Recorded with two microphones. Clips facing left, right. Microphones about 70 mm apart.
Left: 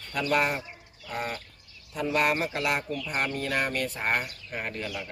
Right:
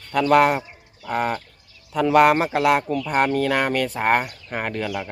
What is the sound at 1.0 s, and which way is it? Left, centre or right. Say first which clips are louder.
Chicken: right 10 dB; right.